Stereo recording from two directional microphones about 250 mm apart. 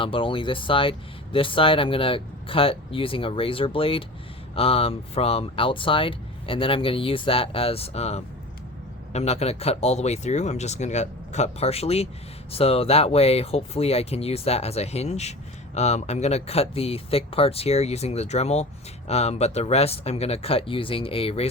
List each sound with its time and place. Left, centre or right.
0.0 s speech: left